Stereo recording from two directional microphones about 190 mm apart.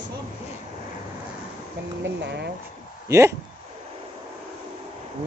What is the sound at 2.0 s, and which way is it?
Speech, 65° right (ahead or behind).